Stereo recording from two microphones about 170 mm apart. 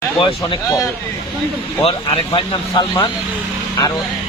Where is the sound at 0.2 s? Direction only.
30° left (ahead or behind).